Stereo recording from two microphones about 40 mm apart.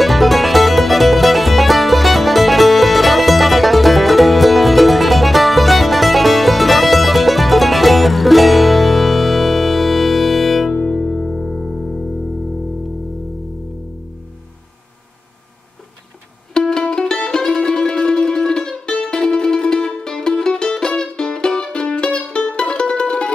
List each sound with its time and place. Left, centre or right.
0.0 s music: centre
16.5 s music: centre